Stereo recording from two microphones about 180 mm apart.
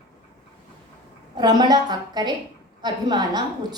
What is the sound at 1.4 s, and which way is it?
A woman's voice, 25° right (ahead or behind).